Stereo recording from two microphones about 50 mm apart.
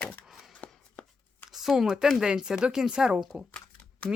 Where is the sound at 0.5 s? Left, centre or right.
Left.